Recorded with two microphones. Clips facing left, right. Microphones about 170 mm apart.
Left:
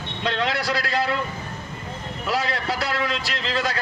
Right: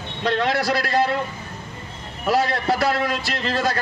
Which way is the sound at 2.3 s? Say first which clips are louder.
Right 5 dB; 50° right (ahead or behind).